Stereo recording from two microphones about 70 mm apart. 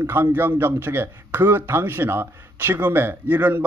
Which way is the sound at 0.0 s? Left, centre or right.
Right.